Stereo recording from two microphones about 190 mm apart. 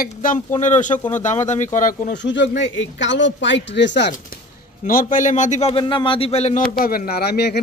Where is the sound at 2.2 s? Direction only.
70° left (ahead or behind).